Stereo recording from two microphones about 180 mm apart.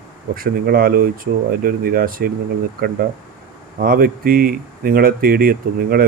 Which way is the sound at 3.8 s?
55° right (ahead or behind).